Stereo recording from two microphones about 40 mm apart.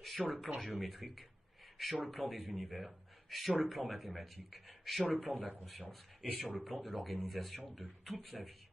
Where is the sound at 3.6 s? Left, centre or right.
Centre.